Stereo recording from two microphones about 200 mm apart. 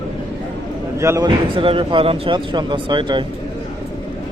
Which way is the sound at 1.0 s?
15° right (ahead or behind).